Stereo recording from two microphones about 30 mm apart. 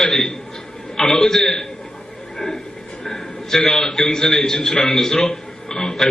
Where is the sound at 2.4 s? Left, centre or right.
Left.